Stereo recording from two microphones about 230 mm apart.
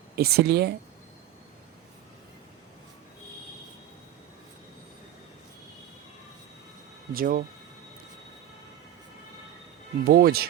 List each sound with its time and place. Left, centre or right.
0.2 s speech: right
7.1 s speech: right
10.0 s speech: right